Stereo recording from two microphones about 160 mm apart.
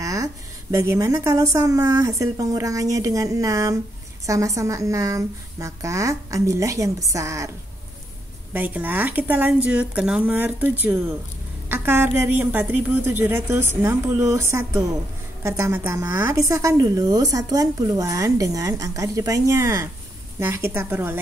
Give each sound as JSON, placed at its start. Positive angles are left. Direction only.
{"t": 0.0, "sound": "a woman's voice", "side_deg": -20}
{"t": 8.5, "sound": "a woman's voice", "side_deg": -10}